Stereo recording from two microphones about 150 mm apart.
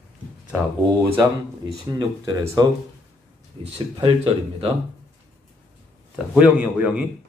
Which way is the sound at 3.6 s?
40° right (ahead or behind).